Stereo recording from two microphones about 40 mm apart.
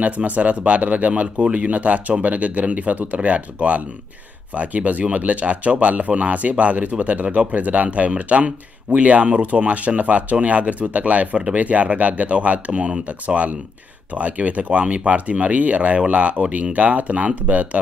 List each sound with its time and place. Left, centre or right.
0.0 s speech: right
11.3 s speech: right